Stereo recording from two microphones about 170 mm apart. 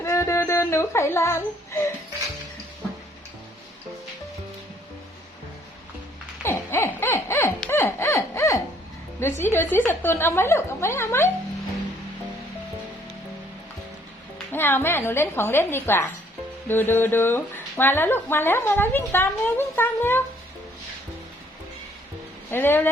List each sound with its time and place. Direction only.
0.0 s speech: 15° left (ahead or behind)
6.4 s a sound: 15° left (ahead or behind)
9.4 s speech: 15° left (ahead or behind)
14.5 s speech: 10° left (ahead or behind)
22.4 s speech: 15° left (ahead or behind)